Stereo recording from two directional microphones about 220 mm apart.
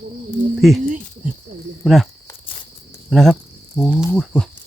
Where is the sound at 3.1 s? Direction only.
Centre (ahead or behind).